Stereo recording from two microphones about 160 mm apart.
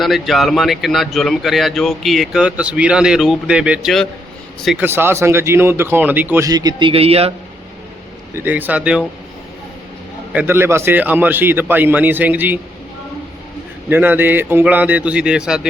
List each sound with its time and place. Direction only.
0.0 s a man's voice: centre (ahead or behind)
4.9 s a man's voice: 15° right (ahead or behind)
6.5 s a man's voice: 25° right (ahead or behind)
8.4 s a man's voice: 10° right (ahead or behind)
10.3 s a man's voice: 15° right (ahead or behind)
13.9 s a man's voice: 10° right (ahead or behind)